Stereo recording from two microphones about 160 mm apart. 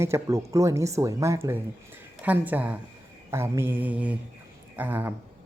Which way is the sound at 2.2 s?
10° right (ahead or behind).